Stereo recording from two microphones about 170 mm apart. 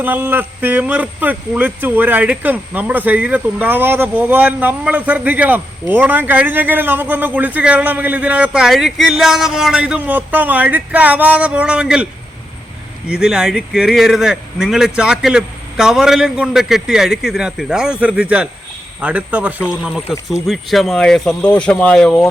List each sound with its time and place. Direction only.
0.0 s speech: 10° right (ahead or behind)
13.1 s speech: 5° right (ahead or behind)